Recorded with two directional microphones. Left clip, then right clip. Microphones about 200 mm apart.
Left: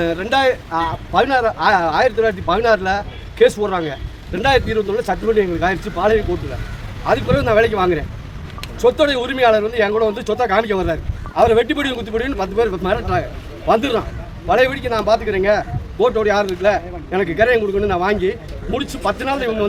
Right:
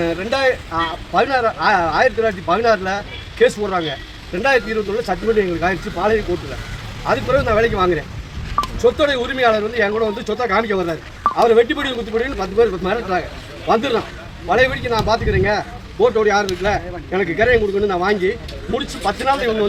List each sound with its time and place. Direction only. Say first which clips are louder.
0.0 s speech: left 1 dB; 15° left (ahead or behind)